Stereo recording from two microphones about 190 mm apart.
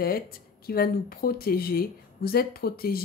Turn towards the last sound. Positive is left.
turn(degrees=50)  # may be behind; listen again after turning